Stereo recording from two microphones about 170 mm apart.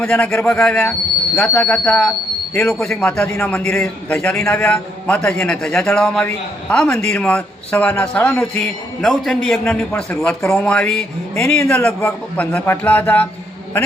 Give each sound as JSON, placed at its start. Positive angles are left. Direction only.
{"t": 0.0, "sound": "a man's voice", "side_deg": 5}
{"t": 9.0, "sound": "a man's voice", "side_deg": 0}